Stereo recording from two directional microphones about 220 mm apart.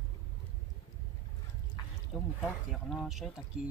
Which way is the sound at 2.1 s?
Centre (ahead or behind).